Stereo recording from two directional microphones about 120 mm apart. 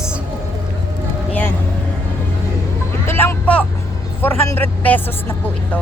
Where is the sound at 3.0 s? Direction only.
20° left (ahead or behind).